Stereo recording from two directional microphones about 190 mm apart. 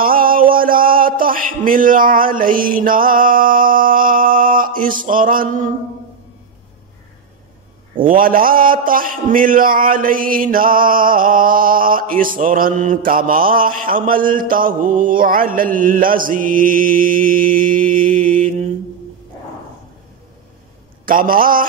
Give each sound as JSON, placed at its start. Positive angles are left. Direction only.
{"t": 0.0, "sound": "a sound", "side_deg": -50}
{"t": 8.1, "sound": "a man's voice", "side_deg": -45}
{"t": 21.0, "sound": "a man's voice", "side_deg": -45}